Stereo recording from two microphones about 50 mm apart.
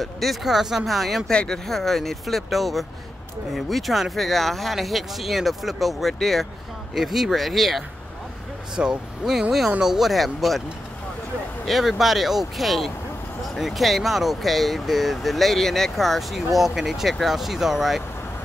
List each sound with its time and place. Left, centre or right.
0.0 s speech: centre
1.3 s speech: centre
1.7 s speech: centre
11.6 s speech: centre